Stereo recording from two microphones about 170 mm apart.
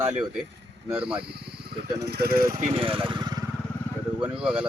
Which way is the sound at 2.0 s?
65° right (ahead or behind).